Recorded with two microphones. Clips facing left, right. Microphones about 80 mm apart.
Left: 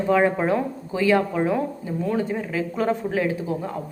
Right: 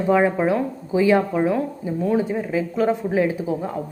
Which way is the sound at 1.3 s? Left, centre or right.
Centre.